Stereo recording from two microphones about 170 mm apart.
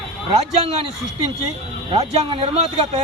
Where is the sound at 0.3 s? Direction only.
35° right (ahead or behind).